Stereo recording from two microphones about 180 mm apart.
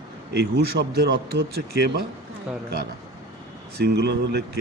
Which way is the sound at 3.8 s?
65° right (ahead or behind).